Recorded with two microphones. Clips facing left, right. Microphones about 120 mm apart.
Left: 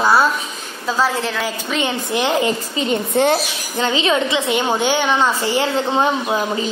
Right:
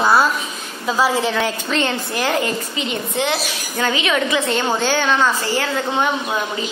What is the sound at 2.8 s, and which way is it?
Speech, 40° left (ahead or behind).